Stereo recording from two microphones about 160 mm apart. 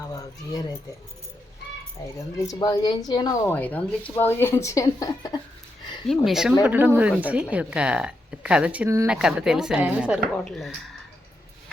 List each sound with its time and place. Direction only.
0.0 s a sound: 20° left (ahead or behind)
2.1 s speech: 20° left (ahead or behind)
6.1 s speech: centre (ahead or behind)
10.3 s speech: 5° left (ahead or behind)